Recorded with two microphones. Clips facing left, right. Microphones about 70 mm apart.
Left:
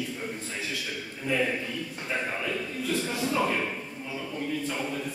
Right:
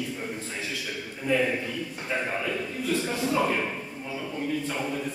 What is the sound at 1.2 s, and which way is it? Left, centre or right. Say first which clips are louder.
A man's voice: right 3 dB; centre.